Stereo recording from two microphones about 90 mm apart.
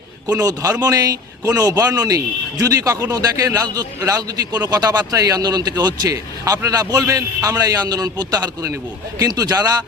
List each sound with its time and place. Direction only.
0.4 s speech: 35° right (ahead or behind)